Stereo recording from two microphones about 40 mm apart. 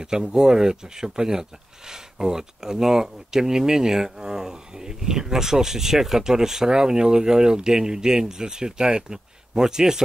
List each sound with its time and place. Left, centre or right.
0.0 s speech: centre